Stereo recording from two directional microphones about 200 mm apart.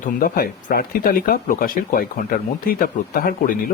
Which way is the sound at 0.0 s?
45° left (ahead or behind).